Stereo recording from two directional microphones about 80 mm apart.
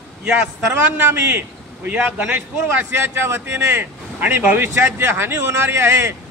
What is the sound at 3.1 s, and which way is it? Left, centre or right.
Speech, right.